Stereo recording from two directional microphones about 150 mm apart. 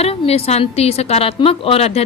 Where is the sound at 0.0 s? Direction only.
45° left (ahead or behind).